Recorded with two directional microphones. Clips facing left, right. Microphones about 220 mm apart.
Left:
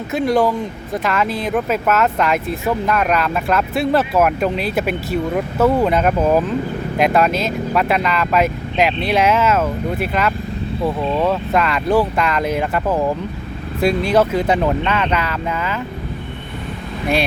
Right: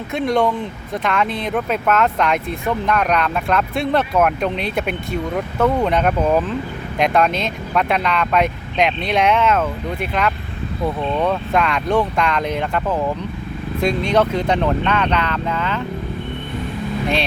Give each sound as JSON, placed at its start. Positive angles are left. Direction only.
{"t": 0.1, "sound": "speech", "side_deg": 0}